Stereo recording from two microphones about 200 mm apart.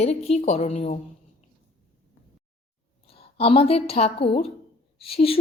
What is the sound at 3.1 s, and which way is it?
A woman's voice, 30° left (ahead or behind).